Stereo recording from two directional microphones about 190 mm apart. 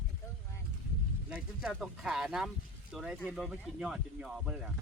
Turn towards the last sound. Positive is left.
turn(degrees=-5)  # may be behind; listen again after turning